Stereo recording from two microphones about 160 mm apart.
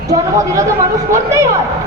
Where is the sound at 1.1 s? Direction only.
20° right (ahead or behind).